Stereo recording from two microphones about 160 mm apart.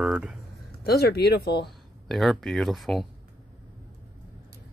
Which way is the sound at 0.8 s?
80° left.